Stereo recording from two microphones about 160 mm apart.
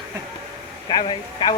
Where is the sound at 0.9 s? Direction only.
30° left (ahead or behind).